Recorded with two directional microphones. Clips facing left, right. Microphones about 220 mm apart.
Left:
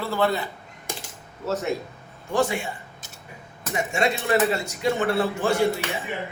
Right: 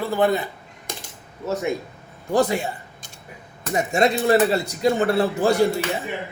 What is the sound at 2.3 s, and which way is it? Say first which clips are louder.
Speech: right 4 dB; 40° right (ahead or behind).